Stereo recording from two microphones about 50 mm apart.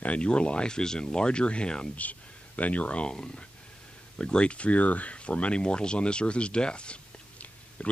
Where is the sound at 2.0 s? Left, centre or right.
Left.